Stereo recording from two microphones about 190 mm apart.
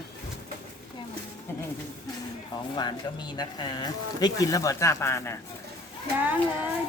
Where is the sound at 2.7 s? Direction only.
25° left (ahead or behind).